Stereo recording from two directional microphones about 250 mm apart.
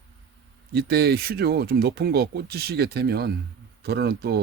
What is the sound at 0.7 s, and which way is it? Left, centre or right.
Speech, right.